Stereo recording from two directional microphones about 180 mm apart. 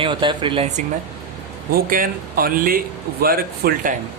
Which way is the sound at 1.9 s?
50° right (ahead or behind).